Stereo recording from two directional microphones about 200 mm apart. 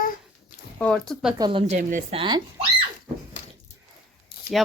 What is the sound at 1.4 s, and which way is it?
Speech, 25° right (ahead or behind).